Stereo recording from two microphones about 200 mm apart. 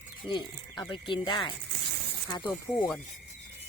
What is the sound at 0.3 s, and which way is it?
Speech, 20° left (ahead or behind).